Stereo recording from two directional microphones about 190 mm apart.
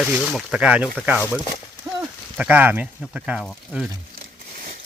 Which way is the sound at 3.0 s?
5° right (ahead or behind).